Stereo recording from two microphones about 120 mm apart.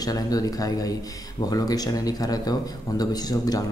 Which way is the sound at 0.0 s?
30° left (ahead or behind).